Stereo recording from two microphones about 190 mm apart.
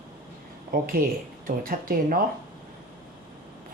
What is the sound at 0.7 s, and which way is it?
Speech, 50° right (ahead or behind).